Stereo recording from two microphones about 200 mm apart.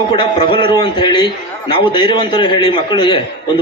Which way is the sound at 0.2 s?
25° left (ahead or behind).